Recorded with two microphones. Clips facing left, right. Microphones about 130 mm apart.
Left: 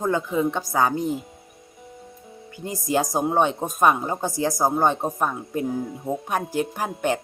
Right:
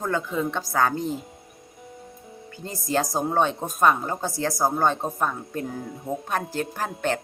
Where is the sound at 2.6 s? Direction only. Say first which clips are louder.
Left 2 dB; 15° left (ahead or behind).